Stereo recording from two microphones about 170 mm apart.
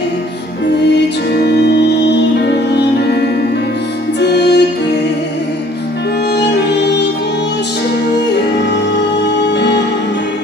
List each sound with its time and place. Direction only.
2.3 s music: 75° left (ahead or behind)
4.2 s music: 80° left
6.3 s music: 80° left
9.6 s music: 85° left